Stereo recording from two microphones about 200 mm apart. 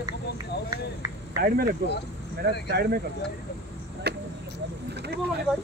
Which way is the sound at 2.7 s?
55° right (ahead or behind).